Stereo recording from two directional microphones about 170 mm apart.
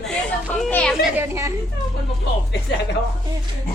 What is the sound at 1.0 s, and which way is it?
Speech, 10° right (ahead or behind).